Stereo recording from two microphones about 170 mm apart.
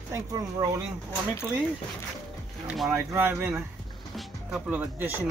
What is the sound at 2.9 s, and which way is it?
Speech, 10° right (ahead or behind).